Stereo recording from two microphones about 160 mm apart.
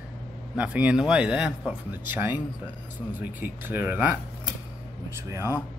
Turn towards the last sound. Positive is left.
turn(degrees=-15)  # may be behind; listen again after turning